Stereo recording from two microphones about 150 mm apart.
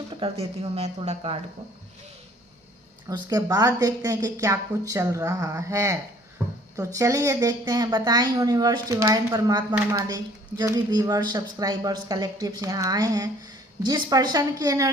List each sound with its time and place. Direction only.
0.2 s speech: 45° right (ahead or behind)
3.1 s speech: 25° right (ahead or behind)